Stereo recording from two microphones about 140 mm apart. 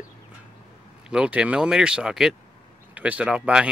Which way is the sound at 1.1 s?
5° right (ahead or behind).